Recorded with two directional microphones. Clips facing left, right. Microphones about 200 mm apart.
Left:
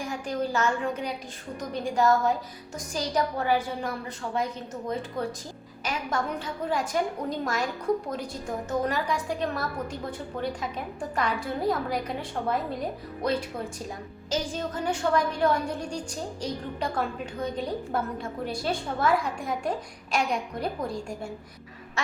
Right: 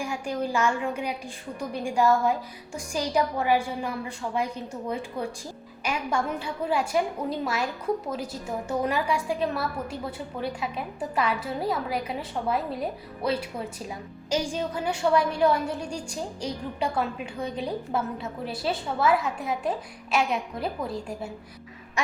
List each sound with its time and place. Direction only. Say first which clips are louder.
0.0 s a woman's voice: right 1 dB; 10° right (ahead or behind)
14.3 s a woman's voice: right 2 dB; 10° right (ahead or behind)
22.0 s a woman's voice: right 3 dB; 15° right (ahead or behind)